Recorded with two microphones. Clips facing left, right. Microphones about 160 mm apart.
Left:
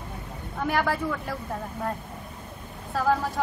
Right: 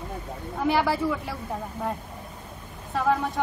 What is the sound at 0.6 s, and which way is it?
Speech, 5° right (ahead or behind).